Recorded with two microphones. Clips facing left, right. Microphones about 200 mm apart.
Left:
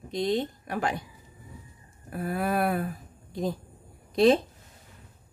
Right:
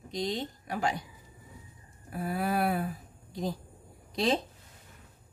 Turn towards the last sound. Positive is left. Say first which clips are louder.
# left 8 dB
turn(degrees=55)  # may be behind; listen again after turning